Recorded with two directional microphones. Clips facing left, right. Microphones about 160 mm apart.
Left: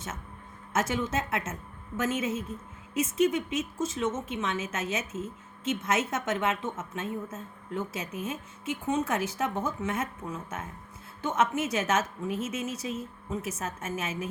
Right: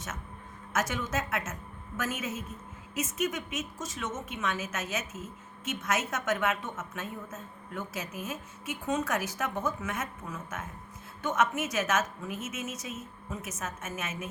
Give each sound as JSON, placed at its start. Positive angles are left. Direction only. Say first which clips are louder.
{"t": 0.7, "sound": "a woman's voice", "louder": "left 3 dB", "side_deg": 25}